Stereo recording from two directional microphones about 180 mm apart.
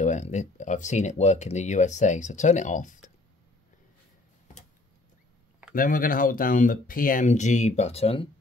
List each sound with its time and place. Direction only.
0.0 s speech: 45° left (ahead or behind)
5.8 s speech: 50° left (ahead or behind); by 8.3 s 35° left (ahead or behind)